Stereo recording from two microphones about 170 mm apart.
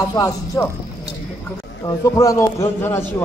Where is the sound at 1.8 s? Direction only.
20° left (ahead or behind).